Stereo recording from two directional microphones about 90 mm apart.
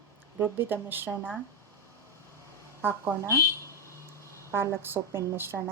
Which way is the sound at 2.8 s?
30° right (ahead or behind).